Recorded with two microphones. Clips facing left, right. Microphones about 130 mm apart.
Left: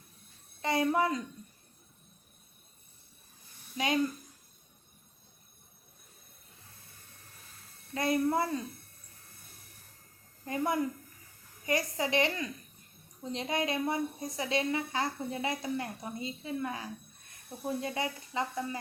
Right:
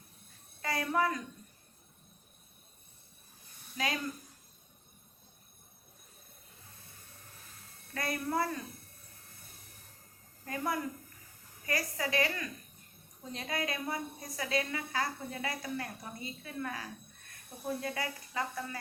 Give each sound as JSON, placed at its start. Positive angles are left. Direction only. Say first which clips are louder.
{"t": 0.6, "sound": "a woman's voice", "louder": "left 3 dB", "side_deg": 25}
{"t": 3.8, "sound": "a woman's voice", "louder": "left 6 dB", "side_deg": 25}
{"t": 7.9, "sound": "a woman's voice", "louder": "left 5 dB", "side_deg": 20}
{"t": 10.4, "sound": "a woman's voice", "louder": "left 4 dB", "side_deg": 20}